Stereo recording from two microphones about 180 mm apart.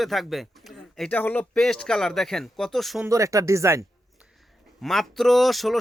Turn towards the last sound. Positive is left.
turn(degrees=0)  # may be behind; listen again after turning